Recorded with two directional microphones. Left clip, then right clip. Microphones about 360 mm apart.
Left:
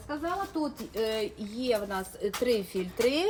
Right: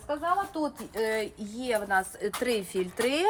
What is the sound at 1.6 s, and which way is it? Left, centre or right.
Speech, right.